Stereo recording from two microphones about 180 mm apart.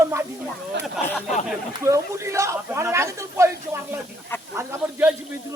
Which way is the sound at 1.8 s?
15° right (ahead or behind).